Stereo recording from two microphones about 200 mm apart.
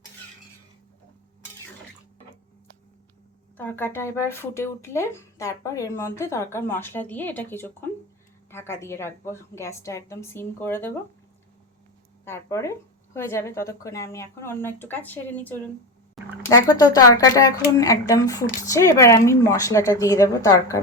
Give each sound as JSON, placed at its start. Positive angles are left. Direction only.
{"t": 3.6, "sound": "speech", "side_deg": 10}
{"t": 12.2, "sound": "speech", "side_deg": 15}